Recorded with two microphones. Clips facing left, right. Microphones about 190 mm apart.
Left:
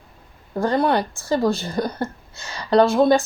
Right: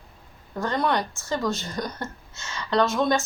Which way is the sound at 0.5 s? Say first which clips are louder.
Left 6 dB; 35° left (ahead or behind).